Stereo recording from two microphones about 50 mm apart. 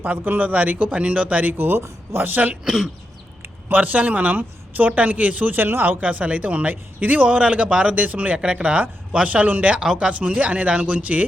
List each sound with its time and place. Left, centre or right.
0.0 s a man's voice: right
1.5 s speech: right
2.6 s speech: centre
3.7 s speech: right
5.5 s speech: right
6.0 s a man's voice: right
8.4 s a man's voice: centre
9.8 s a man's voice: centre